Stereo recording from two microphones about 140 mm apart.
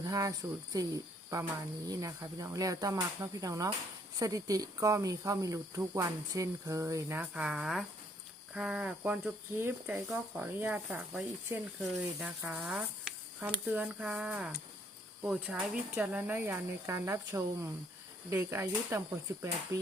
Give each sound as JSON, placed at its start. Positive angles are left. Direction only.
{"t": 0.0, "sound": "speech", "side_deg": -25}
{"t": 11.8, "sound": "speech", "side_deg": -10}